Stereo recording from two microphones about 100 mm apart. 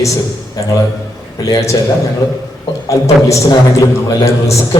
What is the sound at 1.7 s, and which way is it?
A man's voice, 40° left (ahead or behind).